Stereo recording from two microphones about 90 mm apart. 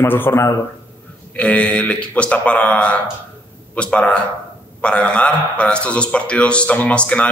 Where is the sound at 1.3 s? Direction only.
15° left (ahead or behind).